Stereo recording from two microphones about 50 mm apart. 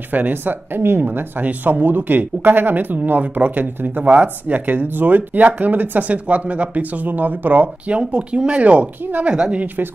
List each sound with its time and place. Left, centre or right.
0.1 s speech: right